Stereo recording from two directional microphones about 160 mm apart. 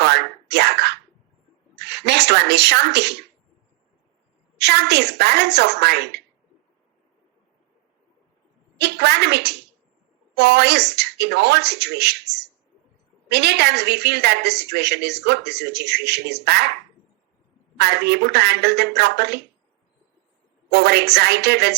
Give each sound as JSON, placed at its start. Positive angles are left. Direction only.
{"t": 0.0, "sound": "a sound", "side_deg": -90}
{"t": 1.9, "sound": "a woman's voice", "side_deg": -90}
{"t": 4.5, "sound": "a woman's voice", "side_deg": -90}
{"t": 8.8, "sound": "a woman's voice", "side_deg": -90}
{"t": 17.7, "sound": "a woman's voice", "side_deg": -90}
{"t": 20.7, "sound": "a woman's voice", "side_deg": -90}